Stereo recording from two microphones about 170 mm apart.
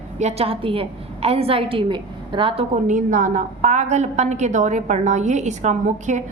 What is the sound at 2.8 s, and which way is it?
A woman's voice, 50° right (ahead or behind).